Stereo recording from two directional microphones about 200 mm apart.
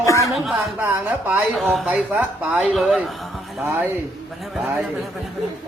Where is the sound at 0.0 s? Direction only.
15° left (ahead or behind).